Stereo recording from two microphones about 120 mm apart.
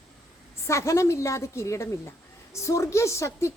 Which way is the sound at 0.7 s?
25° left (ahead or behind).